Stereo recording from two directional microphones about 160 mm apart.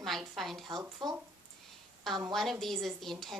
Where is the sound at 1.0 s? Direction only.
25° right (ahead or behind).